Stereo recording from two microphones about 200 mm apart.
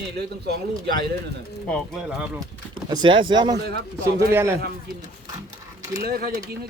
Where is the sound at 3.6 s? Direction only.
50° right (ahead or behind).